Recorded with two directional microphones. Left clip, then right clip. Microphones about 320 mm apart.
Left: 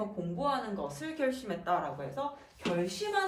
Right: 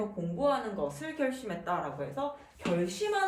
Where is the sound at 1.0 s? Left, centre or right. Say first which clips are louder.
Even; centre.